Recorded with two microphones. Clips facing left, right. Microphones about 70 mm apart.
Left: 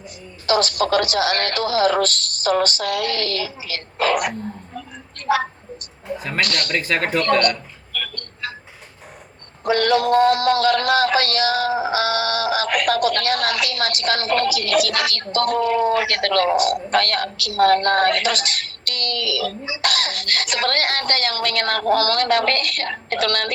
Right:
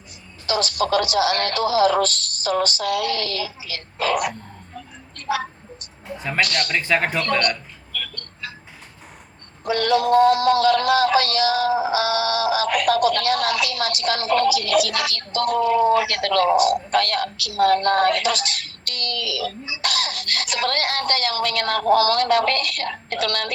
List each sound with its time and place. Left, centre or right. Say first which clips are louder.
0.4 s speech: left 3 dB; left
5.1 s a sound: left 5 dB; left
6.1 s a man's voice: right 2 dB; centre
6.4 s speech: right 1 dB; left
6.7 s speech: even; centre
7.9 s vehicle: left 3 dB; left
9.6 s a sound: left 2 dB; left